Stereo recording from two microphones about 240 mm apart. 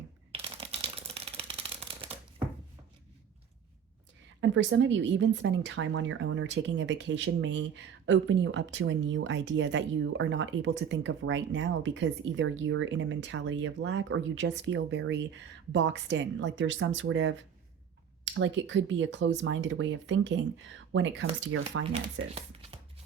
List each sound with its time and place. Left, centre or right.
0.3 s typewriter: right
4.4 s speech: right
22.4 s a sound: right